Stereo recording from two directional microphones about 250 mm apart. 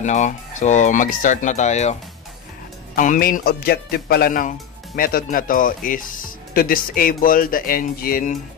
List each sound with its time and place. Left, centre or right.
0.0 s speech: left
3.0 s speech: left